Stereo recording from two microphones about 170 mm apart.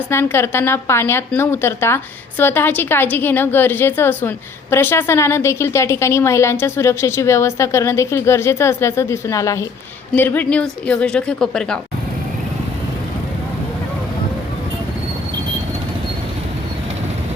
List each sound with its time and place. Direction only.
0.1 s a woman's voice: 15° left (ahead or behind)